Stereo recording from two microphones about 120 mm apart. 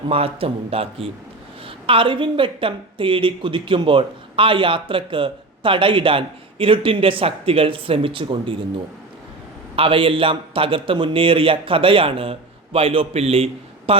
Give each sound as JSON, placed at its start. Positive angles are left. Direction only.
{"t": 0.1, "sound": "a woman's voice", "side_deg": -55}
{"t": 9.7, "sound": "a woman's voice", "side_deg": -50}